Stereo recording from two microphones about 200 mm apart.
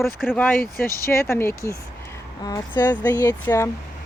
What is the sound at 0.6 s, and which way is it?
Speech, 45° left (ahead or behind).